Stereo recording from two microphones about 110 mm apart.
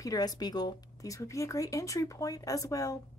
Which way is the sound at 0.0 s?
35° left (ahead or behind).